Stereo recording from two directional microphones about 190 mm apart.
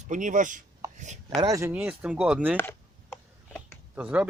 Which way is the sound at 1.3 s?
20° right (ahead or behind).